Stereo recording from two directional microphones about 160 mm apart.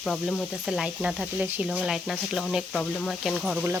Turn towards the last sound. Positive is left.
turn(degrees=-5)  # may be behind; listen again after turning